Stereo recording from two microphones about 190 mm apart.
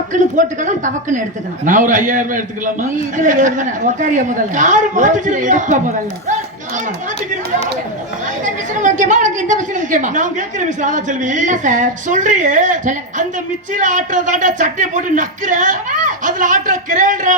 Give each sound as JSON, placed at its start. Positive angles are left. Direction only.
{"t": 0.1, "sound": "a woman's voice", "side_deg": -40}
{"t": 8.4, "sound": "a woman's voice", "side_deg": -40}